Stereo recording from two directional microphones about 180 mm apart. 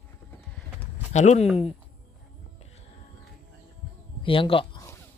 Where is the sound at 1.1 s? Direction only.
40° left (ahead or behind).